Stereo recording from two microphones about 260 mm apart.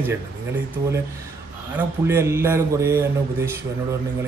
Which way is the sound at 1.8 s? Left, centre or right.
Centre.